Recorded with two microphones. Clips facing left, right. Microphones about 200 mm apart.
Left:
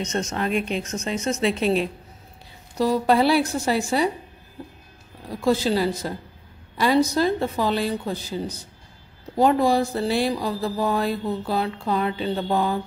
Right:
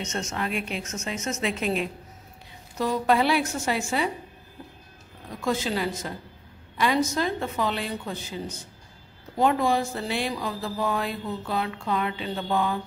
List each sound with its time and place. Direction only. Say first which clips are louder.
0.0 s speech: left 5 dB; 35° left (ahead or behind)
5.3 s speech: left 6 dB; 35° left (ahead or behind)